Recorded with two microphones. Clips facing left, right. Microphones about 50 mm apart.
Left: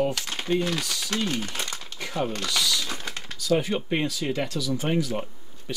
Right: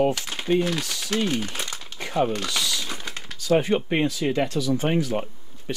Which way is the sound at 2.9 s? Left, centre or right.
Centre.